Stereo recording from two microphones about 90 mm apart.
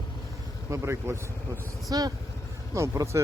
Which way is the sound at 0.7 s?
30° right (ahead or behind).